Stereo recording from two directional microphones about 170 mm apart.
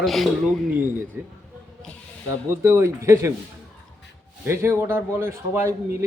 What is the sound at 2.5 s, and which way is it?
Speech, 15° right (ahead or behind).